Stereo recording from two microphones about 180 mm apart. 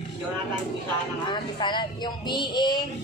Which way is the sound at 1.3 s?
25° left (ahead or behind).